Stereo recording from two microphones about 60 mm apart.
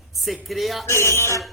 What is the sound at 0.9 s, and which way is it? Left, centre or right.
Speech, left.